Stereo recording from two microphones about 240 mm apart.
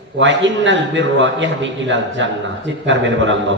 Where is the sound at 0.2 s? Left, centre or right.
Right.